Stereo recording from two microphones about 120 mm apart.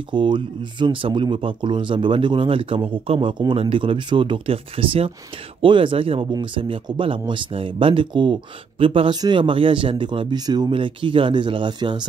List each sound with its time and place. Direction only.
0.1 s speech: 40° right (ahead or behind)
10.7 s speech: 45° right (ahead or behind)